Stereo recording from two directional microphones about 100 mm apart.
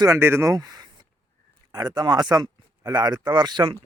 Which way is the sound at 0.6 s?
45° right (ahead or behind).